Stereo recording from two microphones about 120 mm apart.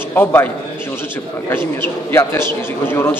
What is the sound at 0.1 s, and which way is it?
Speech, 20° left (ahead or behind).